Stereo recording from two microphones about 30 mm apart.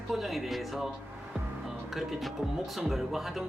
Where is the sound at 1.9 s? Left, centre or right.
Centre.